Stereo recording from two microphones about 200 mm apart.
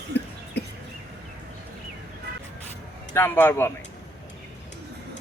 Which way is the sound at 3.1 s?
10° left (ahead or behind).